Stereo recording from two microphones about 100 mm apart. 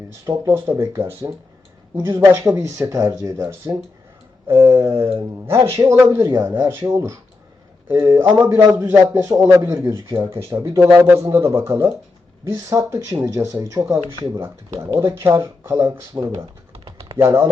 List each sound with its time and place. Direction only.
0.3 s speech: 25° right (ahead or behind)
3.7 s speech: 40° right (ahead or behind)
4.7 s speech: 25° right (ahead or behind)
16.7 s typing: 65° right (ahead or behind)
17.2 s speech: 25° right (ahead or behind)